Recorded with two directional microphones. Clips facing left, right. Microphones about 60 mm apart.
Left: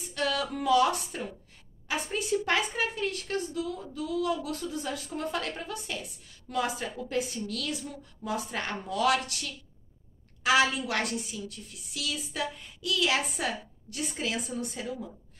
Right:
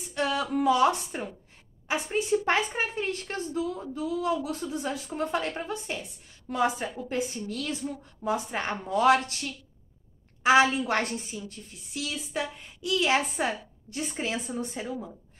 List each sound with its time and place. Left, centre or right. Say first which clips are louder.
0.1 s a woman's voice: right 3 dB; right